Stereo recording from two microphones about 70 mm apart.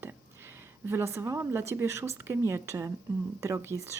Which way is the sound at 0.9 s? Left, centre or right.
Right.